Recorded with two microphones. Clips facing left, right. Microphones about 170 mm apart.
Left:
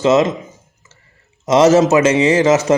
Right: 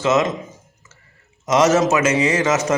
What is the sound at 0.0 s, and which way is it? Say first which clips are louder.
Speech: left 5 dB; 30° left (ahead or behind).